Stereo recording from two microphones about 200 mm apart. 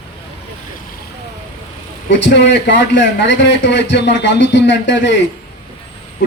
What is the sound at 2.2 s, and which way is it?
A man's voice, 60° left (ahead or behind).